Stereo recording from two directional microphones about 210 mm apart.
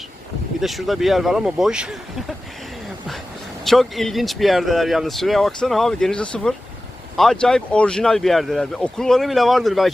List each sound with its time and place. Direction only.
0.6 s speech: centre (ahead or behind)
3.6 s speech: centre (ahead or behind)